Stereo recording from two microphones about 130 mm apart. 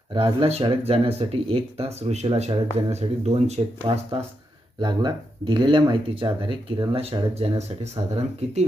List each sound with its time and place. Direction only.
0.1 s speech: 40° right (ahead or behind)
0.4 s speech: 50° right (ahead or behind)
3.9 s speech: 35° right (ahead or behind); by 8.6 s 55° right (ahead or behind)